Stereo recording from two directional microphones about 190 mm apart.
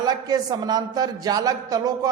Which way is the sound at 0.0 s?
20° right (ahead or behind).